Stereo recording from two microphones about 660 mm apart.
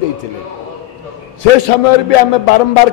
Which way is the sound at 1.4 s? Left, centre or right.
Left.